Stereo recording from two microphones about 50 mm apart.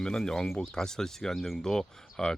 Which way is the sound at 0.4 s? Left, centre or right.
Centre.